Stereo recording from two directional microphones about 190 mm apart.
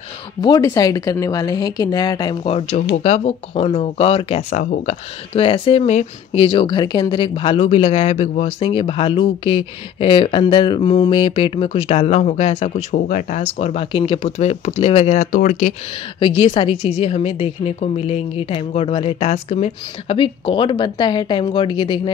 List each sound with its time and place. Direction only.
0.4 s speech: 20° left (ahead or behind)
2.5 s speech: 35° left (ahead or behind)
12.9 s speech: 40° left (ahead or behind)
16.2 s speech: 25° left (ahead or behind)